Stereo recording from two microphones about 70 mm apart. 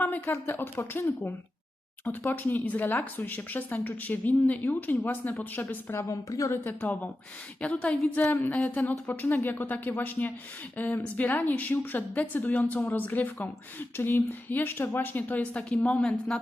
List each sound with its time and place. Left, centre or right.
0.0 s speech: left
2.3 s speech: left
6.1 s a woman's voice: left
6.7 s speech: left